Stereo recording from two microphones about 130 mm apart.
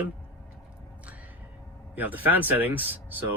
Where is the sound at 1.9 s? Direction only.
15° right (ahead or behind).